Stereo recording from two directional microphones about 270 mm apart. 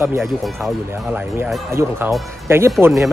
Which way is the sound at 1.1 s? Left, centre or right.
Centre.